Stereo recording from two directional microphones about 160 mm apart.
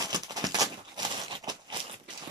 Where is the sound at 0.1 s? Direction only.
25° right (ahead or behind).